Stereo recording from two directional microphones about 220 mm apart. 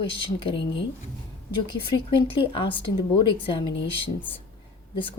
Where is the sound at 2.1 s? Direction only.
25° left (ahead or behind).